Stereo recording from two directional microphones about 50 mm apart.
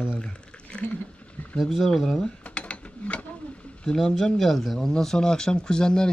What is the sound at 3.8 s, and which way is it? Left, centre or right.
Speech, centre.